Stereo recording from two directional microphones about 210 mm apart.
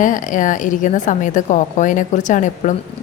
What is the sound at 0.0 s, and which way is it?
A woman's voice, 40° left (ahead or behind).